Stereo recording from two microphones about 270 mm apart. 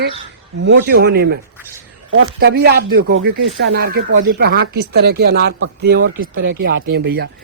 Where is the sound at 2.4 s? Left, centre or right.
Right.